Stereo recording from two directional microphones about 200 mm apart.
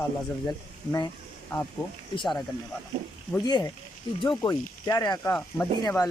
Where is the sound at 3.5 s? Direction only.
20° left (ahead or behind).